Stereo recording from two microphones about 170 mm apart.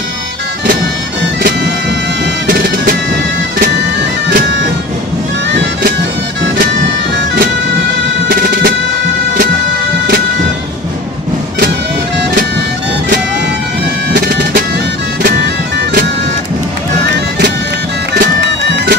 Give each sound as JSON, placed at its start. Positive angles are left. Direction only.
{"t": 4.3, "sound": "bagpipes", "side_deg": -70}
{"t": 8.3, "sound": "music", "side_deg": -70}
{"t": 14.1, "sound": "bagpipes", "side_deg": -65}
{"t": 18.2, "sound": "music", "side_deg": -75}